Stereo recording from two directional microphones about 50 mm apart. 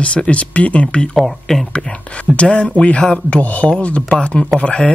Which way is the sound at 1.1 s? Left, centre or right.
Centre.